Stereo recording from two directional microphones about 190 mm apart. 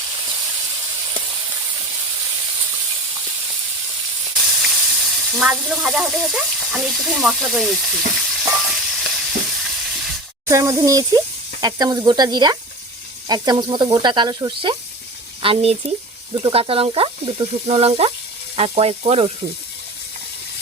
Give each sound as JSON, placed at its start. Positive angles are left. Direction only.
{"t": 4.4, "sound": "sizzle", "side_deg": 0}
{"t": 10.4, "sound": "speech", "side_deg": -15}